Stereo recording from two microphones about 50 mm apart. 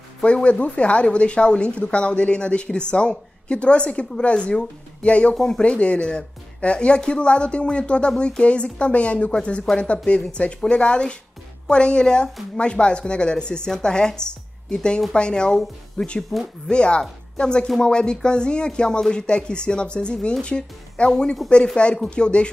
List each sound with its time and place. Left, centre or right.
0.2 s speech: left
5.3 s speech: centre
5.6 s speech: left; by 16.4 s centre
16.6 s speech: centre